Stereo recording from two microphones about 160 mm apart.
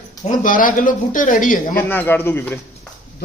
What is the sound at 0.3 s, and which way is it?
Speech, 55° left (ahead or behind).